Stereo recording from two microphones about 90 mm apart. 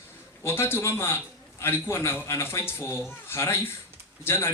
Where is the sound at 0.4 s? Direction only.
30° left (ahead or behind).